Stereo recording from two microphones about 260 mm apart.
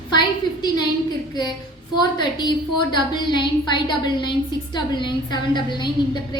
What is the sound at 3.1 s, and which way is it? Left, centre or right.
A woman's voice, centre.